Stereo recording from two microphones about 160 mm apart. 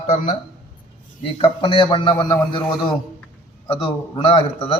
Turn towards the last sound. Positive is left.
turn(degrees=35)  # may be behind; listen again after turning